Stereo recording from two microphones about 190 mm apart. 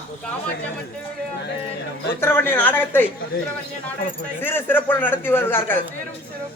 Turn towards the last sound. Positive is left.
turn(degrees=10)  # may be behind; listen again after turning